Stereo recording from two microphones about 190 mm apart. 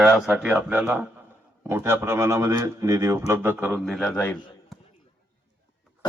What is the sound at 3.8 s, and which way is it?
Speech, centre (ahead or behind).